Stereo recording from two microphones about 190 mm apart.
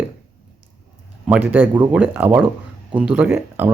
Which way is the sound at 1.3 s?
10° right (ahead or behind).